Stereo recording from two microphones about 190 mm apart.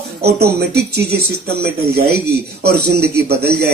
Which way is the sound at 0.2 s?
60° right (ahead or behind).